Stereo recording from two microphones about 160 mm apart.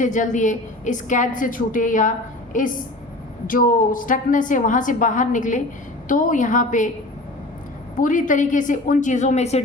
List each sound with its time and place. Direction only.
0.0 s a woman's voice: 50° left (ahead or behind)
7.9 s a woman's voice: 55° left (ahead or behind)